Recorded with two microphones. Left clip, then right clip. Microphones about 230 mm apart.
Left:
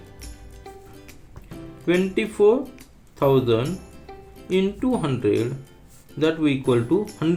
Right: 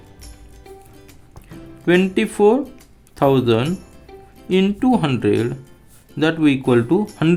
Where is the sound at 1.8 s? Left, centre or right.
Right.